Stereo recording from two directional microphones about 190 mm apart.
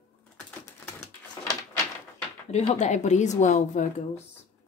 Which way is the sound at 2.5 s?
35° left (ahead or behind).